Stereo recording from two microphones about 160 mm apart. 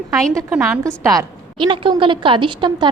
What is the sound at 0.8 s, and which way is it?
A woman's voice, 20° right (ahead or behind).